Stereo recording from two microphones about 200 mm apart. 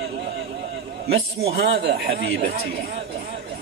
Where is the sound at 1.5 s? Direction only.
55° right (ahead or behind).